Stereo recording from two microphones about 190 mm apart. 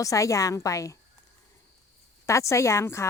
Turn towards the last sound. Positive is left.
turn(degrees=15)  # may be behind; listen again after turning